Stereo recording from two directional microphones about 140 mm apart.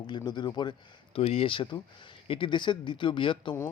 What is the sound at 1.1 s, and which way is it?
Speech, 45° left (ahead or behind).